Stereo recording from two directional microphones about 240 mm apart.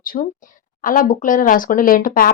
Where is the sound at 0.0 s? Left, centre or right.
Left.